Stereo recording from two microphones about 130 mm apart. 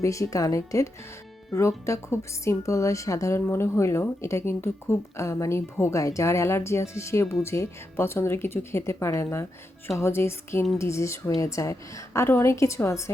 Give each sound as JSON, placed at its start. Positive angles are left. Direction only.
{"t": 0.0, "sound": "speech", "side_deg": 25}